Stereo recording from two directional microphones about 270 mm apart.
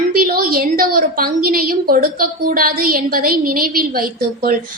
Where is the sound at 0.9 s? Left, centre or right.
Right.